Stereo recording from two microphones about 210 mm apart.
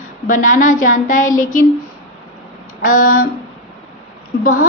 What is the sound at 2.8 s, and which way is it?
Speech, 40° left (ahead or behind).